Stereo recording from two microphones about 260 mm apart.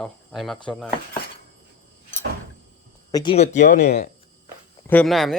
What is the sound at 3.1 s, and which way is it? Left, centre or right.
Speech, centre.